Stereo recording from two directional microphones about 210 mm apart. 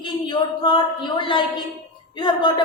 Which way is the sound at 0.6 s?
25° left (ahead or behind).